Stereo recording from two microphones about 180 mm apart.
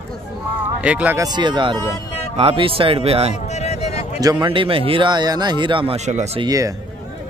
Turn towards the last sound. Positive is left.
turn(degrees=-20)  # may be behind; listen again after turning